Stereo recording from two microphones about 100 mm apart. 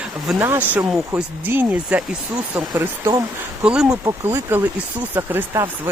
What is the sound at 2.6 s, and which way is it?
Speech, 30° right (ahead or behind).